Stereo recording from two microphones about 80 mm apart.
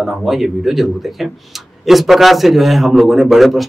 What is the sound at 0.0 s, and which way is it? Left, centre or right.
A man's voice, centre.